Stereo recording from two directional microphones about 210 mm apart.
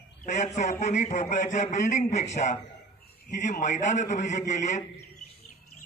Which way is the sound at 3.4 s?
35° left (ahead or behind).